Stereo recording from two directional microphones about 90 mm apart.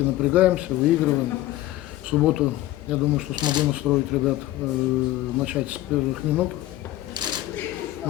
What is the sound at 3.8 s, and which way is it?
Speech, 5° right (ahead or behind).